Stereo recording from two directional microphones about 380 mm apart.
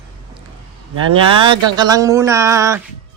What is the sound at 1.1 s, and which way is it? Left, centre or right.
Speech, centre.